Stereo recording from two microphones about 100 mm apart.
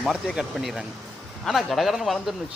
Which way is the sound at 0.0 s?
Centre (ahead or behind).